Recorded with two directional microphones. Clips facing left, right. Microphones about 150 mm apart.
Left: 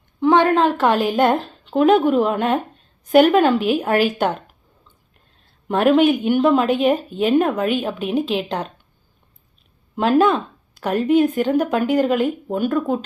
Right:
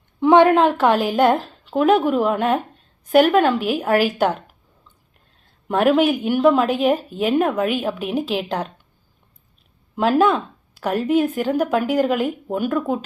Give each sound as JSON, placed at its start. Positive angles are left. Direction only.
{"t": 0.2, "sound": "a sound", "side_deg": -20}
{"t": 0.8, "sound": "a woman's voice", "side_deg": -10}
{"t": 5.6, "sound": "a woman's voice", "side_deg": -5}
{"t": 9.9, "sound": "a woman's voice", "side_deg": -5}